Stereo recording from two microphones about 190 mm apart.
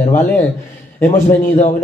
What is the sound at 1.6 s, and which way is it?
Speech, 40° left (ahead or behind).